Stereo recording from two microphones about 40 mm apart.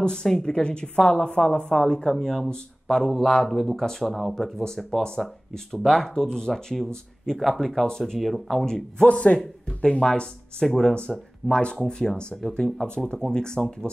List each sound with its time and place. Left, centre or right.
0.0 s a woman's voice: centre
2.2 s a woman's voice: centre
6.0 s a woman's voice: left; by 8.6 s centre
8.6 s a woman's voice: centre
9.0 s a woman's voice: left